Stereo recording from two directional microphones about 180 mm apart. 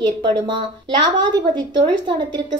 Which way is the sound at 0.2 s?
25° right (ahead or behind).